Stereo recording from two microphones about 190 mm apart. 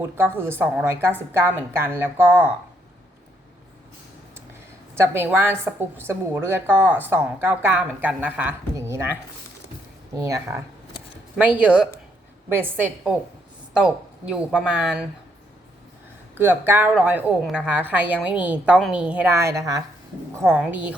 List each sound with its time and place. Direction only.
0.0 s a woman's voice: 10° right (ahead or behind)
4.9 s a woman's voice: 10° right (ahead or behind)
10.2 s a woman's voice: 15° right (ahead or behind)
16.4 s a woman's voice: 10° right (ahead or behind)